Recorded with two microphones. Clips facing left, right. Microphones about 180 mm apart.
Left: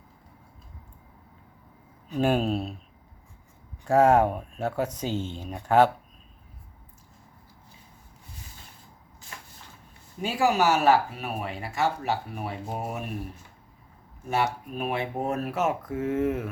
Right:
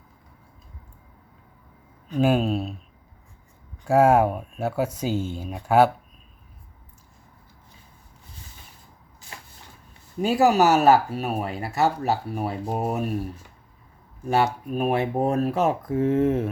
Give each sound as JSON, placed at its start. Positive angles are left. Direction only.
{"t": 2.1, "sound": "speech", "side_deg": 0}
{"t": 3.8, "sound": "speech", "side_deg": -10}
{"t": 10.2, "sound": "speech", "side_deg": -40}
{"t": 14.3, "sound": "speech", "side_deg": -40}